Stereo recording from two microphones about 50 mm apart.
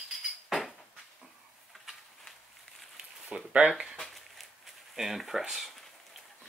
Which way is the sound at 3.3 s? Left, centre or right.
Right.